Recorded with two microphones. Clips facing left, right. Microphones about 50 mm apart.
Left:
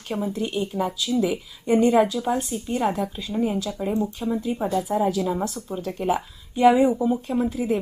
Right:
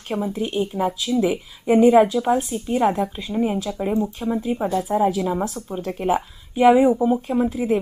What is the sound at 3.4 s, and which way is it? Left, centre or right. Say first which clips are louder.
A woman's voice: right 2 dB; right.